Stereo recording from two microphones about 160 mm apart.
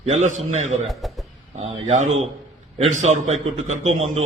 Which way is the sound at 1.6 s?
45° right (ahead or behind).